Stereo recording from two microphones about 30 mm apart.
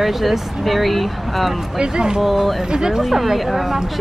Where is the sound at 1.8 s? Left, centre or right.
Right.